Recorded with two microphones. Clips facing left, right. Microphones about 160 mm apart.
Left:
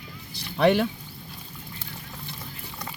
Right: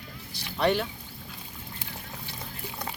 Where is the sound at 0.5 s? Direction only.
60° left (ahead or behind).